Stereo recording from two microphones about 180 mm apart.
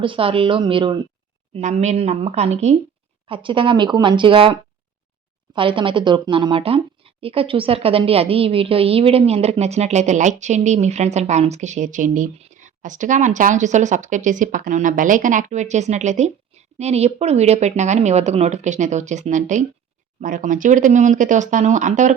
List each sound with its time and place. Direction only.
0.0 s a woman's voice: 30° right (ahead or behind)
5.5 s a woman's voice: 30° right (ahead or behind)